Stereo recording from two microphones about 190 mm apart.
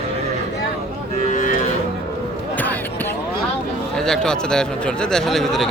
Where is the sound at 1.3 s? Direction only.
45° left (ahead or behind).